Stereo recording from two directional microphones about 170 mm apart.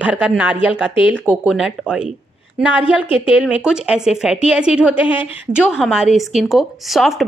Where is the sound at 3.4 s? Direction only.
5° right (ahead or behind).